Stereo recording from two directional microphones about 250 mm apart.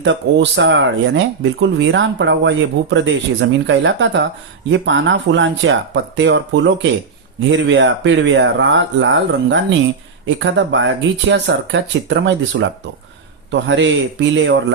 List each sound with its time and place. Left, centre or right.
0.0 s speech: right